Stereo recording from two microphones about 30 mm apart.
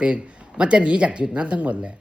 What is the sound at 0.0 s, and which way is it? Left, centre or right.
A man's voice, right.